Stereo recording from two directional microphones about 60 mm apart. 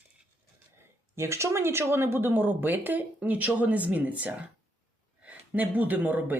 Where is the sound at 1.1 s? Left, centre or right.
Right.